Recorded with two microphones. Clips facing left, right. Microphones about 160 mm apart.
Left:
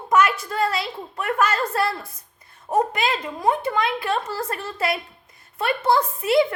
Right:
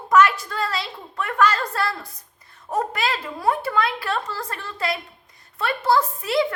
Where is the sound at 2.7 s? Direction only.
20° left (ahead or behind).